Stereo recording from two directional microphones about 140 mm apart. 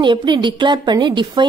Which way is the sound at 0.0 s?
35° right (ahead or behind).